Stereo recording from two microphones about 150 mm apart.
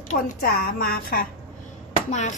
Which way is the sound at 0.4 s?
90° left.